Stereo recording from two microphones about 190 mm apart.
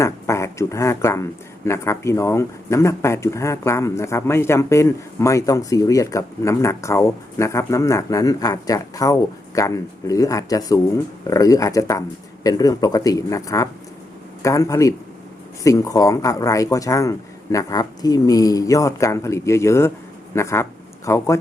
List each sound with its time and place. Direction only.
0.0 s a man's voice: 15° left (ahead or behind)